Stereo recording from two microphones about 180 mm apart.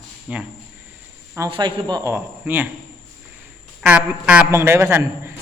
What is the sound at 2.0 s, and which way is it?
Speech, 10° right (ahead or behind).